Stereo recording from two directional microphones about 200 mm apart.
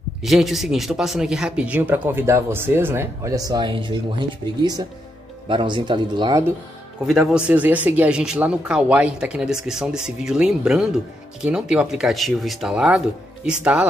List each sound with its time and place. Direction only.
0.2 s speech: centre (ahead or behind); by 6.4 s 20° right (ahead or behind)
7.1 s speech: centre (ahead or behind)